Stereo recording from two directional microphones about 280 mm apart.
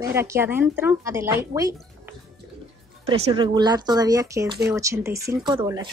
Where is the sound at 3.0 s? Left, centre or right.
Centre.